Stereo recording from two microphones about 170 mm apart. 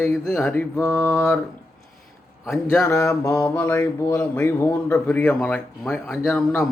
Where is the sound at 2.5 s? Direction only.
10° left (ahead or behind).